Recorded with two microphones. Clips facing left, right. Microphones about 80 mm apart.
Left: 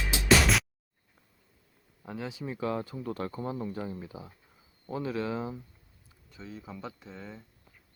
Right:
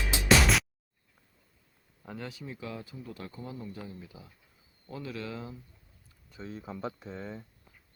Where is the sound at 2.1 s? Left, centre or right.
Centre.